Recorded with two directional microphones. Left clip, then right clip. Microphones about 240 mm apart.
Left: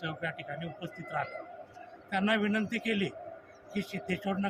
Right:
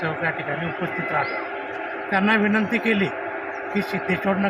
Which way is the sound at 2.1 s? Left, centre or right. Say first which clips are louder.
Right 10 dB; left.